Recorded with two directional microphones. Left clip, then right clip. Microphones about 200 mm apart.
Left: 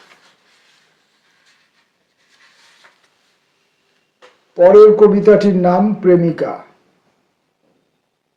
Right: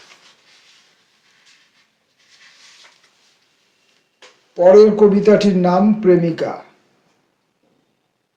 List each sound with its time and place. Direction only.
4.5 s a man's voice: 40° left (ahead or behind)